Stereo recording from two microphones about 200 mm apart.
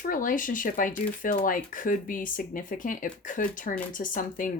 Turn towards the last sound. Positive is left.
turn(degrees=40)  # may be behind; listen again after turning